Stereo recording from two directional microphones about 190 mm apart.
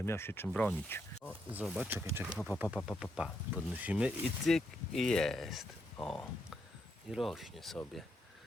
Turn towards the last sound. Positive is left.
turn(degrees=0)  # may be behind; listen again after turning